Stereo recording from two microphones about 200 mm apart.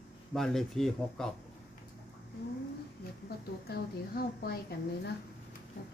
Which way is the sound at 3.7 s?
50° left (ahead or behind).